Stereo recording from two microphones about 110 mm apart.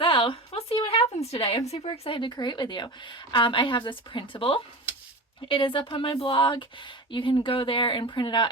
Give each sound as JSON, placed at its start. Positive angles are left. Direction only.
{"t": 0.0, "sound": "a sound", "side_deg": 50}
{"t": 0.9, "sound": "a woman's voice", "side_deg": 65}
{"t": 1.9, "sound": "speech", "side_deg": 45}